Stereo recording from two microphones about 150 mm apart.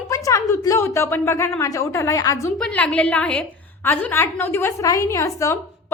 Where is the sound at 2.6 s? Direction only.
5° left (ahead or behind).